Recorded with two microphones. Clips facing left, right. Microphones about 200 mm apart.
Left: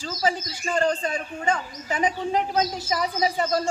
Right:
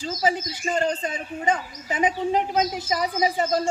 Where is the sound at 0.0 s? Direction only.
20° right (ahead or behind).